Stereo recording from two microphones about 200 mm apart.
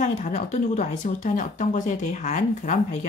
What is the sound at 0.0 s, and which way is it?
Speech, 35° left (ahead or behind).